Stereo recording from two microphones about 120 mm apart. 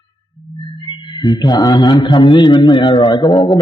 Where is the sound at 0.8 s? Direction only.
45° left (ahead or behind).